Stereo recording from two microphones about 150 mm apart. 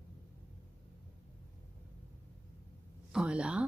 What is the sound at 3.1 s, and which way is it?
Speech, 5° right (ahead or behind).